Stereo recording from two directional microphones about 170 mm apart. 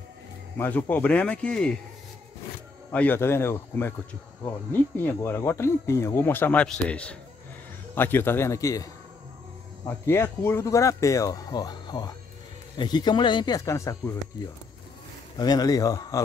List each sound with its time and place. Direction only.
0.6 s speech: 10° left (ahead or behind)
2.9 s speech: 10° left (ahead or behind)
4.9 s speech: 10° left (ahead or behind)
9.8 s speech: 15° left (ahead or behind)
15.3 s speech: 25° left (ahead or behind)